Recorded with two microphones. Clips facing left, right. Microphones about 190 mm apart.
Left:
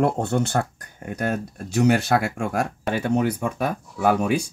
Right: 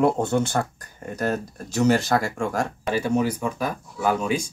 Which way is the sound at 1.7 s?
60° left (ahead or behind).